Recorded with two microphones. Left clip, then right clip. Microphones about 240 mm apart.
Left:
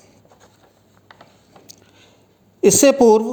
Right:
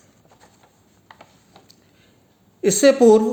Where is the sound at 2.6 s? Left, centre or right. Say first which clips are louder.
Left 2 dB; left.